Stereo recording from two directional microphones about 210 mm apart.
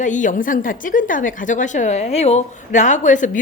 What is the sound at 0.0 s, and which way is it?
A woman's voice, 35° left (ahead or behind).